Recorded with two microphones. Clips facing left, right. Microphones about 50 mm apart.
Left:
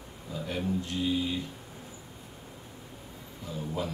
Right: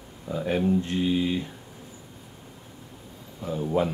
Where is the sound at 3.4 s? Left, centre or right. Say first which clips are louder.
Right 9 dB; right.